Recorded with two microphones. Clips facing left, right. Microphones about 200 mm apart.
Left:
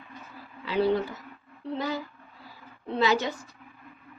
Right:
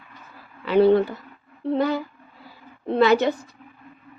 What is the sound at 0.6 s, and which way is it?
A woman's voice, 60° right (ahead or behind).